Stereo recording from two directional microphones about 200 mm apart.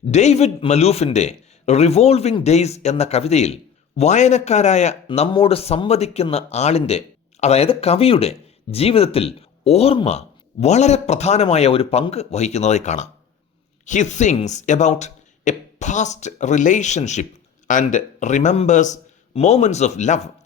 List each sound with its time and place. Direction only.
0.1 s speech: 35° left (ahead or behind)